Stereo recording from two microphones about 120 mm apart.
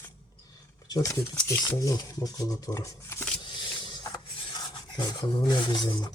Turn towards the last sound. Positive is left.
turn(degrees=35)  # may be behind; listen again after turning